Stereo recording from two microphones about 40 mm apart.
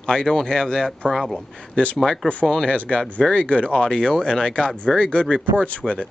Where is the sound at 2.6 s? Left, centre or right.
Left.